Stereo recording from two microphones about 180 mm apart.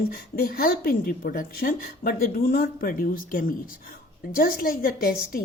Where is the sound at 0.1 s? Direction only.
55° left (ahead or behind).